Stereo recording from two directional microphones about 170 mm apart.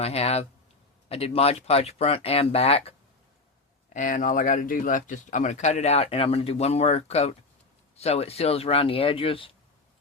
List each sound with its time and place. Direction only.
0.0 s speech: 35° left (ahead or behind)
3.9 s speech: 50° left (ahead or behind); by 9.5 s 30° left (ahead or behind)